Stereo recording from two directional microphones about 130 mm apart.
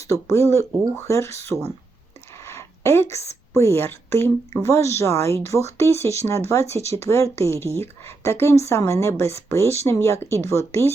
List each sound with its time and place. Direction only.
0.0 s a woman's voice: 20° left (ahead or behind)